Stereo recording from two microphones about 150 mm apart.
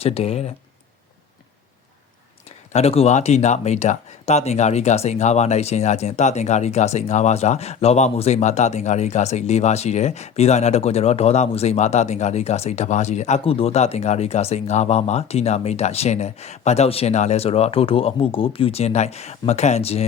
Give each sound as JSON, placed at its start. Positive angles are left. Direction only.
{"t": 0.0, "sound": "speech", "side_deg": 40}
{"t": 2.7, "sound": "speech", "side_deg": 40}